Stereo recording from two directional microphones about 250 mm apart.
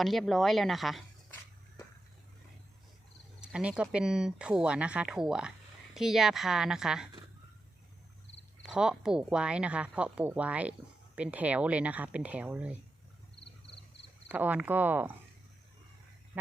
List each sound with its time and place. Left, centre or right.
0.0 s speech: centre
3.4 s speech: centre
8.7 s speech: centre
14.3 s speech: centre